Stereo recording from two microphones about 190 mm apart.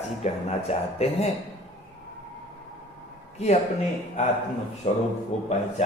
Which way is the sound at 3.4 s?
35° left (ahead or behind).